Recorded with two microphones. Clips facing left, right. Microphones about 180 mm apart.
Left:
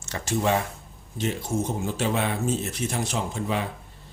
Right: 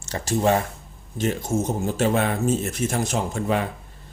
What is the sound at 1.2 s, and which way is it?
Speech, 45° right (ahead or behind).